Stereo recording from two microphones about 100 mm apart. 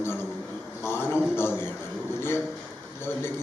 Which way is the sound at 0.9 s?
25° left (ahead or behind).